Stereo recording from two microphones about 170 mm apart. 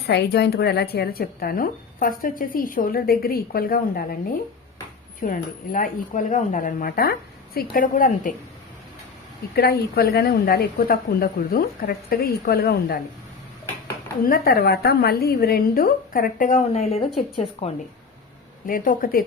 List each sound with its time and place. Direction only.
0.1 s speech: 75° left (ahead or behind); by 4.2 s 60° left (ahead or behind)
5.2 s speech: 55° left (ahead or behind)
9.6 s speech: 65° left (ahead or behind)
14.3 s speech: 60° left (ahead or behind); by 17.7 s 35° left (ahead or behind)
18.6 s speech: 55° left (ahead or behind)